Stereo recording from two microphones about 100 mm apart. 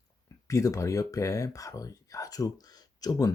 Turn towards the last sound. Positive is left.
turn(degrees=40)  # may be behind; listen again after turning